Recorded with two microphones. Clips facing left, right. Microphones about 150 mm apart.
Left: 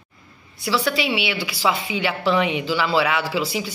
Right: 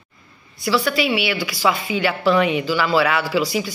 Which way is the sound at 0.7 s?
20° left (ahead or behind).